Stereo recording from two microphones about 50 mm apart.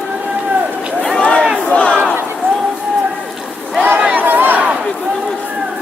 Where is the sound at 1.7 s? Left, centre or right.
Left.